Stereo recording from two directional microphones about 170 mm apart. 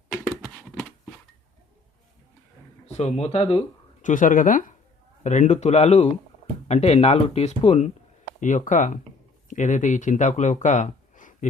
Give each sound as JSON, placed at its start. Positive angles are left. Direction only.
{"t": 0.1, "sound": "a sound", "side_deg": 5}
{"t": 3.0, "sound": "speech", "side_deg": 40}
{"t": 4.0, "sound": "speech", "side_deg": 50}